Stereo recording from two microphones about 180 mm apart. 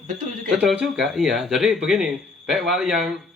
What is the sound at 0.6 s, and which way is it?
Speech, 5° right (ahead or behind).